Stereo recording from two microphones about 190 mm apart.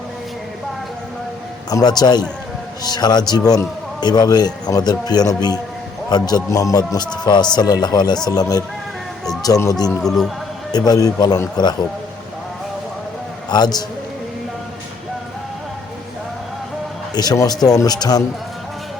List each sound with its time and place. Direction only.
1.7 s speech: 20° left (ahead or behind)
10.0 s speech: centre (ahead or behind)
10.7 s speech: 20° left (ahead or behind)
13.5 s speech: 20° left (ahead or behind)
17.2 s speech: 20° left (ahead or behind)